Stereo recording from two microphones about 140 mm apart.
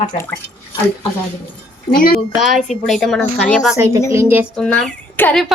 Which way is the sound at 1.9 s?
90° left.